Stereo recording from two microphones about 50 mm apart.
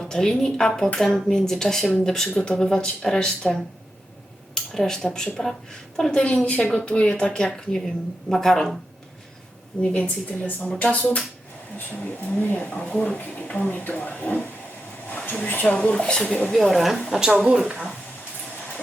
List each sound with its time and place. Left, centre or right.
0.0 s speech: centre
4.5 s a sound: centre
5.0 s speech: centre
7.5 s speech: centre
9.8 s speech: centre; by 12.5 s left
12.5 s speech: left
15.6 s speech: left
16.5 s speech: centre
17.1 s speech: centre